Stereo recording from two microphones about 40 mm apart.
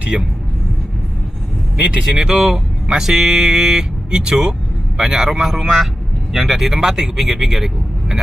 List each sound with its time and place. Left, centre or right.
0.1 s speech: centre
2.1 s speech: centre
5.3 s speech: centre